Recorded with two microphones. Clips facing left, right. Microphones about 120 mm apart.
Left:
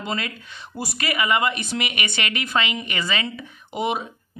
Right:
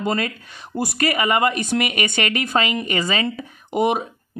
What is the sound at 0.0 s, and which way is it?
Speech, 45° right (ahead or behind).